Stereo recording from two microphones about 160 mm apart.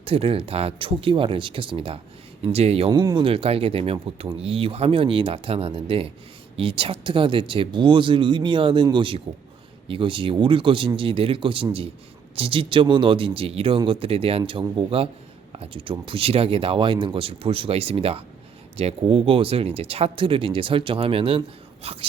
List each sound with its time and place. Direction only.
0.0 s speech: 35° right (ahead or behind)
3.0 s speech: 25° right (ahead or behind)